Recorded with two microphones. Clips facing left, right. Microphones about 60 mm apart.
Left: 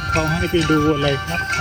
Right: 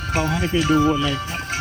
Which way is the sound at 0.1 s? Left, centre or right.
Left.